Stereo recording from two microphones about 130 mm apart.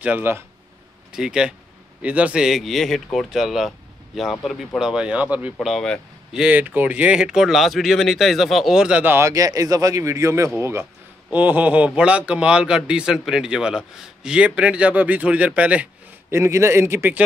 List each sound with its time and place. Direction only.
0.0 s speech: 15° right (ahead or behind)
5.7 s speech: centre (ahead or behind)
16.3 s speech: 20° right (ahead or behind)